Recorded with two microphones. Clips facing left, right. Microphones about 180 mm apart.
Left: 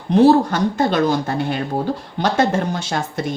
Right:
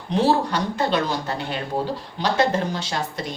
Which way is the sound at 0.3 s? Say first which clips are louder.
Left 7 dB; 45° left (ahead or behind).